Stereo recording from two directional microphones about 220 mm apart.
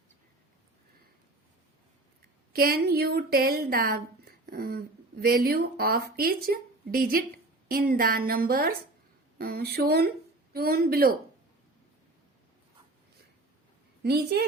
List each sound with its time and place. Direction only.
2.5 s a woman's voice: 45° right (ahead or behind)
14.0 s a woman's voice: 45° right (ahead or behind)